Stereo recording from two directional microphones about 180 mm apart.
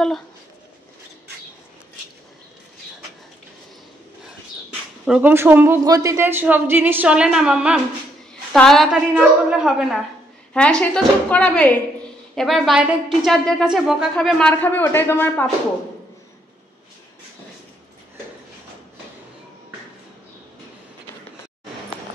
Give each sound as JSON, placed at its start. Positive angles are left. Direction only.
{"t": 5.0, "sound": "a woman's voice", "side_deg": -5}